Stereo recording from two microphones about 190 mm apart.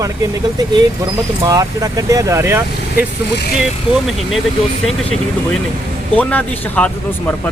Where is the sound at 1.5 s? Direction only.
20° right (ahead or behind).